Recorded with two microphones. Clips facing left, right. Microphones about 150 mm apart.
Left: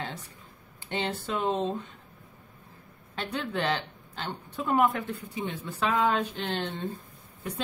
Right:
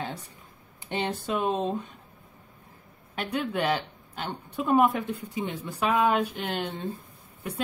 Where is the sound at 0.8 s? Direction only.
15° right (ahead or behind).